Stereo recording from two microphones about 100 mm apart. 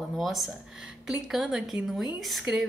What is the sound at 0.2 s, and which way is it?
A woman's voice, centre (ahead or behind).